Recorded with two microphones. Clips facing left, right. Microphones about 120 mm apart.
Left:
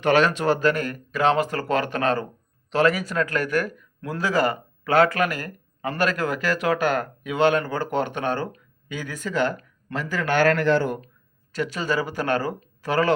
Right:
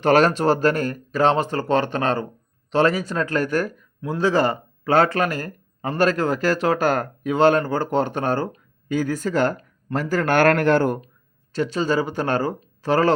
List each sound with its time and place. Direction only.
0.0 s a man's voice: 40° right (ahead or behind)
11.5 s speech: 30° right (ahead or behind)